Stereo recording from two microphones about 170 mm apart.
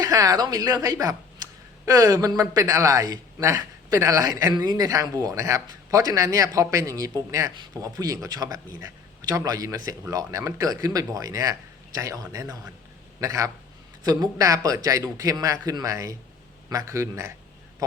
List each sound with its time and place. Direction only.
0.0 s a woman's voice: 20° right (ahead or behind)